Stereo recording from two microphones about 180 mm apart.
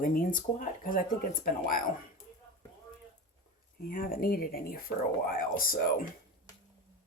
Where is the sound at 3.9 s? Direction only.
50° left (ahead or behind).